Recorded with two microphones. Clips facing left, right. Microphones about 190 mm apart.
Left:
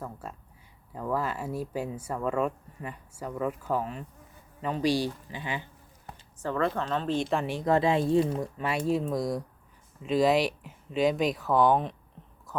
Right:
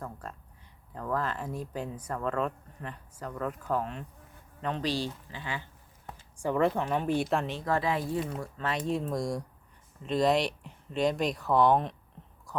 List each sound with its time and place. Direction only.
0.0 s speech: 5° left (ahead or behind)
6.4 s a woman's voice: 15° right (ahead or behind)
7.4 s speech: 15° left (ahead or behind)
8.4 s speech: 10° left (ahead or behind)